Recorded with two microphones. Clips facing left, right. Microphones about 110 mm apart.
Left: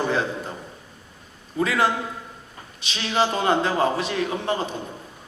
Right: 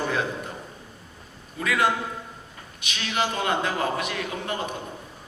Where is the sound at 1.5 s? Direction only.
30° left (ahead or behind).